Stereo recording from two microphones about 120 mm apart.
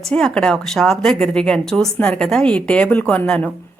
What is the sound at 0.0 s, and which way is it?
A woman's voice, 5° left (ahead or behind).